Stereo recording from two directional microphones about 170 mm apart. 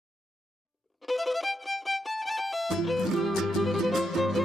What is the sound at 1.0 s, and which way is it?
Music, centre (ahead or behind).